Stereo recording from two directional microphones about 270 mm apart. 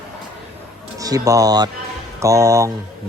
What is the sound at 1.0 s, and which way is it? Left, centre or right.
Speech, centre.